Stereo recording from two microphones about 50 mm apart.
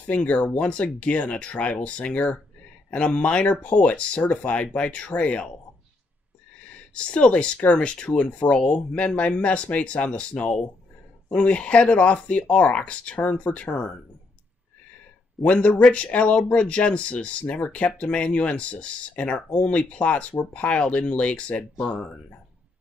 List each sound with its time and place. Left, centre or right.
0.0 s speech: left
6.9 s speech: left
15.4 s speech: left